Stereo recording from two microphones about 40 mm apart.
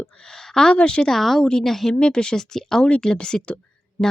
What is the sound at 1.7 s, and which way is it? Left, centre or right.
Speech, centre.